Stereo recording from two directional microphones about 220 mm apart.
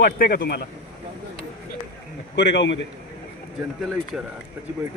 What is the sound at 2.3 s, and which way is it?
Speech, 50° left (ahead or behind).